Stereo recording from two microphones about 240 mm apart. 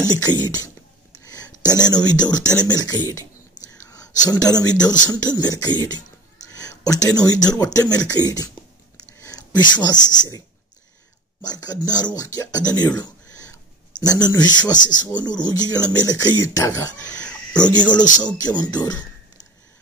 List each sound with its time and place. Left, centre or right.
0.0 s speech: centre
1.2 s a sound: centre
1.6 s speech: centre
4.3 s speech: centre
8.9 s a sound: centre
10.0 s speech: centre
11.4 s speech: centre